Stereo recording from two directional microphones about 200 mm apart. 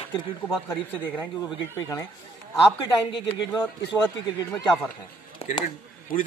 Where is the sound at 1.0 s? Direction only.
10° left (ahead or behind).